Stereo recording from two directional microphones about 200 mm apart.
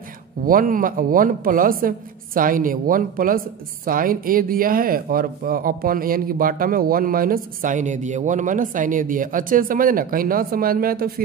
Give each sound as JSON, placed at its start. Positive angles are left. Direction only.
{"t": 0.5, "sound": "speech", "side_deg": -45}